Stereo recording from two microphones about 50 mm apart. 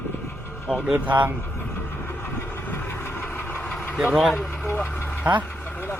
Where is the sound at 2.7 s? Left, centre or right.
Left.